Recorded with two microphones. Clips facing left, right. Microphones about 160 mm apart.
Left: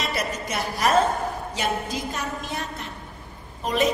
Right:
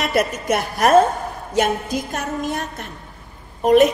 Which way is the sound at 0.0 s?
55° right (ahead or behind).